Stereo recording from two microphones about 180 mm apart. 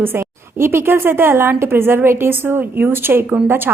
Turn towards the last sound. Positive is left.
turn(degrees=-10)  # may be behind; listen again after turning